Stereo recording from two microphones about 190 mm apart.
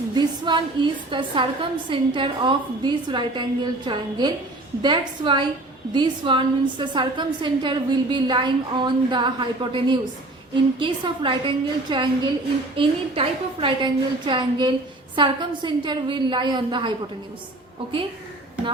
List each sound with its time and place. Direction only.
0.1 s a woman's voice: 25° right (ahead or behind)